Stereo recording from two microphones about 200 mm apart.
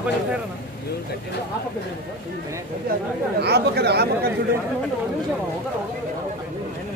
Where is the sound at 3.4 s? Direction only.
55° right (ahead or behind).